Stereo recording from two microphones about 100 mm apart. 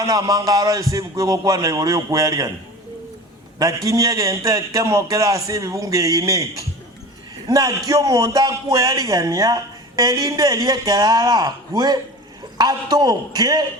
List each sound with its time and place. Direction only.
0.0 s a man's voice: 35° right (ahead or behind)
3.8 s a man's voice: 35° right (ahead or behind)
7.4 s a man's voice: 35° right (ahead or behind)